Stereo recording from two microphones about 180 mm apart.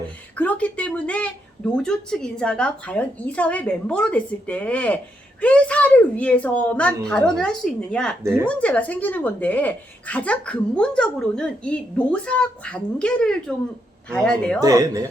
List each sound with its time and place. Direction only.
0.3 s speech: 10° left (ahead or behind)
14.6 s speech: 20° right (ahead or behind)